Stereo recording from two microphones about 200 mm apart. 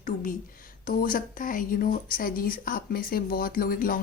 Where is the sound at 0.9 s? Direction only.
45° left (ahead or behind).